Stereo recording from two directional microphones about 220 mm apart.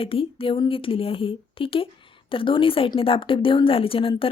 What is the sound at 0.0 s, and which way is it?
A woman's voice, 25° left (ahead or behind).